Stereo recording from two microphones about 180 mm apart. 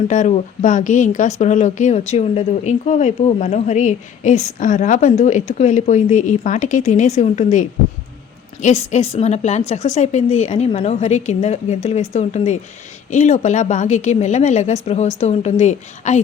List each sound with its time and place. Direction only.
0.1 s a woman's voice: 40° left (ahead or behind)
8.6 s a woman's voice: 40° left (ahead or behind)